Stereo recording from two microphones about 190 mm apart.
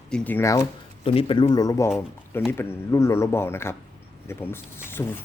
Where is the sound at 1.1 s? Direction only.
30° left (ahead or behind).